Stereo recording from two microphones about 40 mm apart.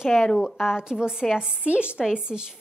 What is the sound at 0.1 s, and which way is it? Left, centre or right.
Speech, centre.